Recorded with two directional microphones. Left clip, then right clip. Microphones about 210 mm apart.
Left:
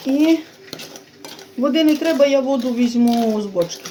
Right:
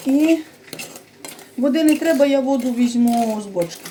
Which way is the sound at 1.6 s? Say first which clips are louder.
Left 1 dB; 30° left (ahead or behind).